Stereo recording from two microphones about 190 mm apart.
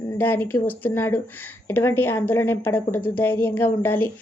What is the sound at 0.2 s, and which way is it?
Speech, 10° left (ahead or behind).